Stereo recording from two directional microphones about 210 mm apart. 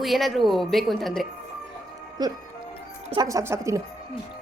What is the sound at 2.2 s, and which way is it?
Speech, 20° right (ahead or behind).